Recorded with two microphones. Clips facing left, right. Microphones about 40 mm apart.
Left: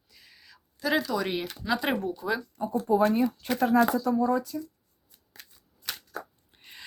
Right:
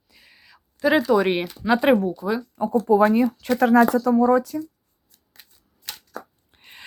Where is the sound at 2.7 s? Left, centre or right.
Right.